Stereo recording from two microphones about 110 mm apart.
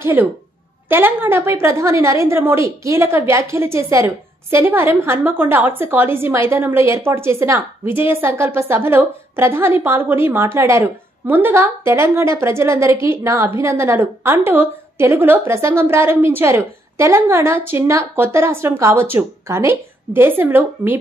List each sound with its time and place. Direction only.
0.0 s a woman's voice: 20° right (ahead or behind)